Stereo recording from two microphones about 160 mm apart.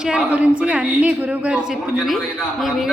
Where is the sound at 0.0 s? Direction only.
5° right (ahead or behind).